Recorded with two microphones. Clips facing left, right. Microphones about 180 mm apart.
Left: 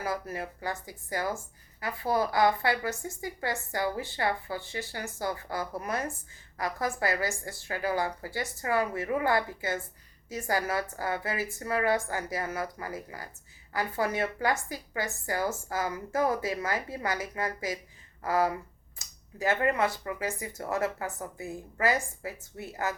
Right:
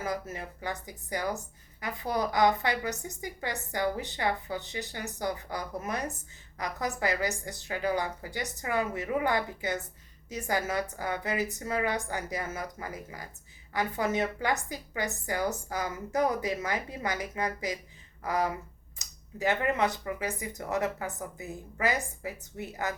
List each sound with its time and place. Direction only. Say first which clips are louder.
0.0 s speech: left 1 dB; 20° right (ahead or behind)
14.0 s speech: left 1 dB; 20° right (ahead or behind)
18.9 s a sound: even; 20° right (ahead or behind)
19.8 s speech: even; 20° right (ahead or behind)